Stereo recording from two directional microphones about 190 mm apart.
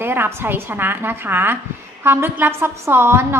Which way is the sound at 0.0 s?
10° right (ahead or behind).